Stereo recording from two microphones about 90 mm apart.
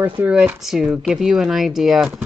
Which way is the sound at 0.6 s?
5° right (ahead or behind).